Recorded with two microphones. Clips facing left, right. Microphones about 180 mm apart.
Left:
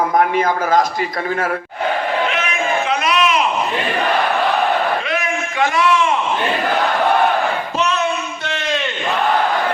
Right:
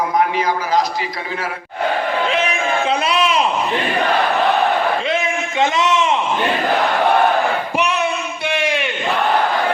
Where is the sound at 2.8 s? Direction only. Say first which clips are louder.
Right 1 dB; 30° right (ahead or behind).